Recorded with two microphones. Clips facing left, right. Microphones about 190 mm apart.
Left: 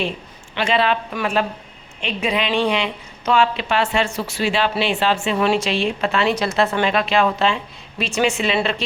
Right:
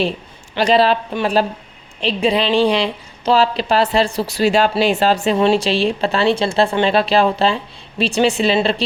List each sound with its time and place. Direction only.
0.5 s a woman's voice: 35° right (ahead or behind)